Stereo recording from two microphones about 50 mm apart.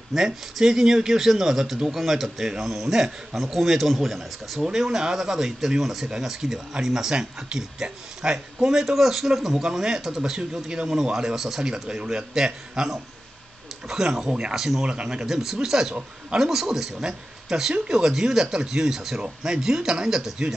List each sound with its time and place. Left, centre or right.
0.1 s a man's voice: centre
14.9 s speech: centre